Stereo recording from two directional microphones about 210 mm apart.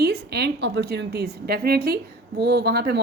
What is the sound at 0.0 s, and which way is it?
A woman's voice, 50° right (ahead or behind).